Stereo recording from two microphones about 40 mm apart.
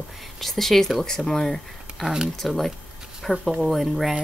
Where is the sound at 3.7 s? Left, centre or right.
Centre.